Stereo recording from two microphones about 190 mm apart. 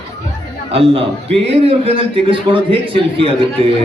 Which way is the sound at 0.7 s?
30° right (ahead or behind).